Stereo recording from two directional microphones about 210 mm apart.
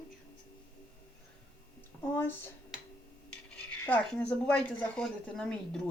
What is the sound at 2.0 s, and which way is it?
Speech, 10° left (ahead or behind).